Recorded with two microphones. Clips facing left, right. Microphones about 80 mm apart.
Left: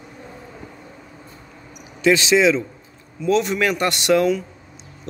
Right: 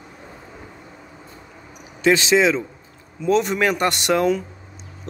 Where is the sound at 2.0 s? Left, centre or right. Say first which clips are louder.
Left 1 dB; right.